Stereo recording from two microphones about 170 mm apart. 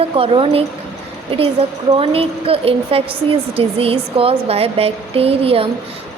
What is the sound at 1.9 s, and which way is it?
A woman's voice, 35° right (ahead or behind).